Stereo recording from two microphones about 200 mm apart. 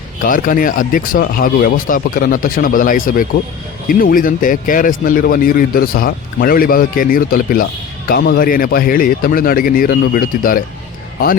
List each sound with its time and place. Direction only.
0.2 s speech: 45° left (ahead or behind)